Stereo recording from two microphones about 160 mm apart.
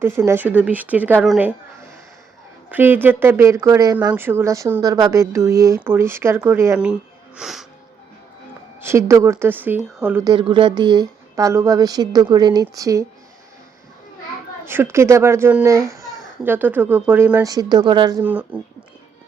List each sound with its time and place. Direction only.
0.0 s speech: 15° right (ahead or behind)
2.6 s speech: 10° right (ahead or behind)
8.8 s speech: 15° right (ahead or behind)
10.3 s a woman's voice: 30° right (ahead or behind)
14.6 s speech: 15° right (ahead or behind)
17.5 s a woman's voice: 25° right (ahead or behind)
18.2 s speech: 10° right (ahead or behind)